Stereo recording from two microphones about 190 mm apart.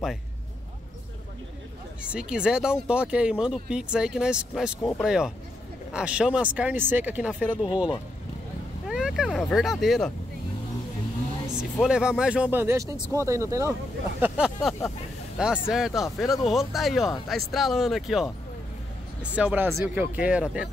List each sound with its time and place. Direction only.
2.0 s speech: 5° right (ahead or behind)
11.8 s speech: 5° right (ahead or behind)
14.2 s speech: 5° right (ahead or behind)
19.3 s speech: 10° right (ahead or behind)